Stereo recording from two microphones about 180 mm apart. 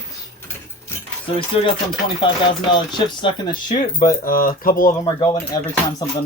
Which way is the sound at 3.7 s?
45° left (ahead or behind).